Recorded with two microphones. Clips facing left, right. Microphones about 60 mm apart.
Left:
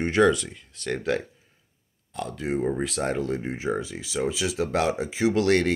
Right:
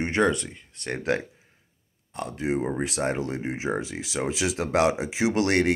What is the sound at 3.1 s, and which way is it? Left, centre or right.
Speech, right.